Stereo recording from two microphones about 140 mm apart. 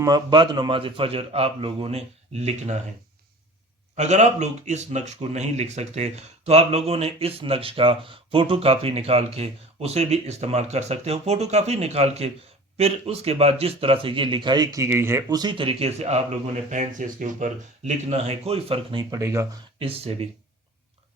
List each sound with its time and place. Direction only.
0.0 s speech: 30° right (ahead or behind); by 2.7 s 50° right (ahead or behind)
3.9 s speech: 55° right (ahead or behind)
16.6 s speech: 60° right (ahead or behind); by 19.0 s 40° right (ahead or behind)
19.1 s speech: 20° right (ahead or behind)
19.8 s speech: 45° right (ahead or behind)